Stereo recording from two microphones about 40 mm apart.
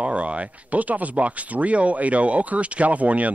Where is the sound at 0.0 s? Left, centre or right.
Right.